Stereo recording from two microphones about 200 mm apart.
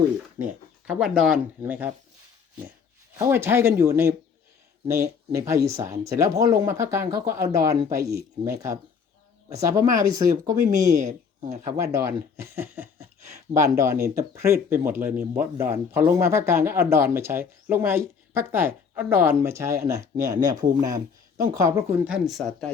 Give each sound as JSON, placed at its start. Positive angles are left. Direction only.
{"t": 0.4, "sound": "speech", "side_deg": -40}
{"t": 0.9, "sound": "speech", "side_deg": -5}
{"t": 3.2, "sound": "speech", "side_deg": -10}
{"t": 11.3, "sound": "speech", "side_deg": -35}
{"t": 11.8, "sound": "speech", "side_deg": -15}